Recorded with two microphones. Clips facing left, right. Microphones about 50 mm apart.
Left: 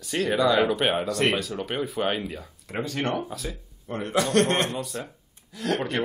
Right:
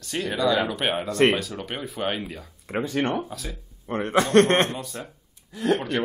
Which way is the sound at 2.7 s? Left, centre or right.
Right.